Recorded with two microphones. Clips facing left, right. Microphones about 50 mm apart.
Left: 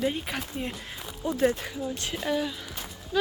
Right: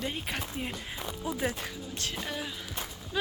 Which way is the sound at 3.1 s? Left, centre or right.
Centre.